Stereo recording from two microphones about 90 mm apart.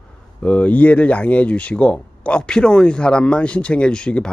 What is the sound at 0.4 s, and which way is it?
Speech, 15° left (ahead or behind).